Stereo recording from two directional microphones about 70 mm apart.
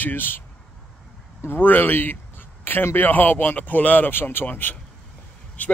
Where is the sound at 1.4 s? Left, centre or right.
Left.